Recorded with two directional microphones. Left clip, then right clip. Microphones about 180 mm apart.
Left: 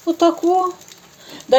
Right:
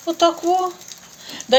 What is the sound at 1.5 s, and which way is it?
Speech, 50° left (ahead or behind).